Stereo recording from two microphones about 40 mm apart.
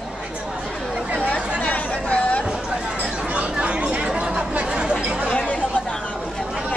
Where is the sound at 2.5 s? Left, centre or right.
Centre.